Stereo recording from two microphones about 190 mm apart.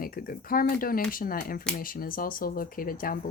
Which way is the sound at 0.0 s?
50° left (ahead or behind).